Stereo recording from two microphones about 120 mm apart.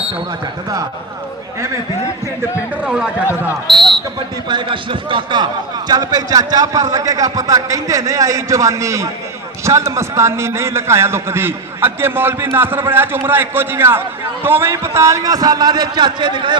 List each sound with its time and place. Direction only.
2.8 s speech: 10° right (ahead or behind)
4.4 s a man's voice: 40° right (ahead or behind)